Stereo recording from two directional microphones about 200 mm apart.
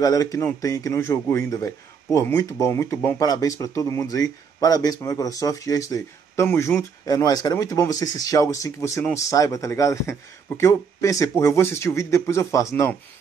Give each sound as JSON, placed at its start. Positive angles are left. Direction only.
{"t": 0.0, "sound": "speech", "side_deg": 15}